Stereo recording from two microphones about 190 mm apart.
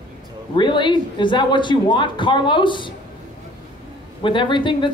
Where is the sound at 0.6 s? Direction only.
25° left (ahead or behind).